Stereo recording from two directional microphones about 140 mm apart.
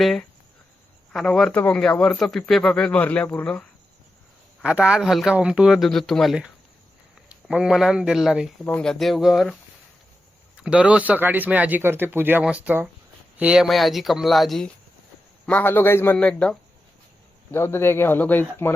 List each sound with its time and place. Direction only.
0.0 s a man's voice: centre (ahead or behind)
4.6 s a man's voice: 5° right (ahead or behind)
8.6 s a man's voice: 5° left (ahead or behind)
10.6 s a man's voice: 10° right (ahead or behind)
15.4 s a man's voice: 15° left (ahead or behind)
16.1 s a man's voice: 5° left (ahead or behind)
17.5 s a man's voice: 15° left (ahead or behind)